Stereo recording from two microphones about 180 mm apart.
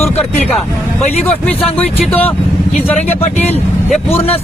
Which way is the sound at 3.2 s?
35° left (ahead or behind).